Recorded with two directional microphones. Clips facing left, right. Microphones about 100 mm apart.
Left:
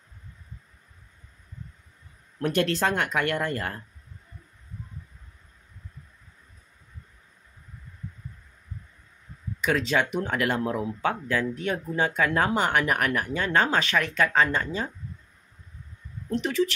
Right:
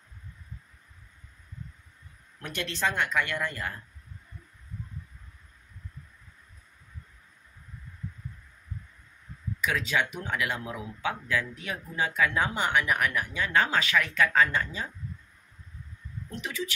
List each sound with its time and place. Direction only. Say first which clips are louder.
2.3 s speech: left 11 dB; 45° left (ahead or behind)
9.7 s speech: left 5 dB; 35° left (ahead or behind)
16.3 s speech: left 11 dB; 35° left (ahead or behind)